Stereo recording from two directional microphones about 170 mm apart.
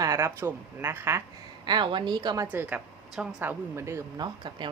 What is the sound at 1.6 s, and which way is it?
Speech, 25° right (ahead or behind).